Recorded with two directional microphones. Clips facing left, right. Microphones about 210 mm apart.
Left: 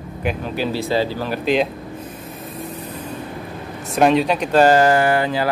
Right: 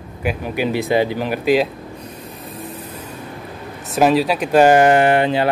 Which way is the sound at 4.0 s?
5° right (ahead or behind).